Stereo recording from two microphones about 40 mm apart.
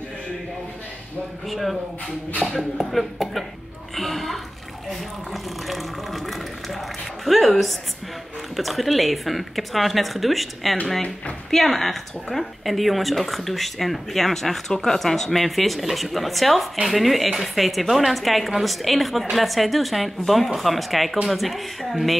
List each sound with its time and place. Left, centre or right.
1.5 s a woman's voice: centre